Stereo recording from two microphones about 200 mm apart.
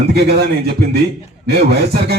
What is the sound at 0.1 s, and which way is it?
Speech, 55° right (ahead or behind).